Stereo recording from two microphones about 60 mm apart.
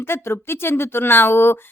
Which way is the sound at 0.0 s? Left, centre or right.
Left.